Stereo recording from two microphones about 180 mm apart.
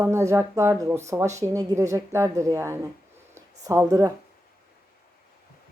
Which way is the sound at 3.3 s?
15° right (ahead or behind).